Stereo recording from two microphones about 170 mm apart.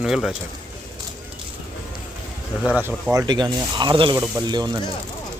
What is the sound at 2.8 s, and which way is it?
Speech, 15° right (ahead or behind).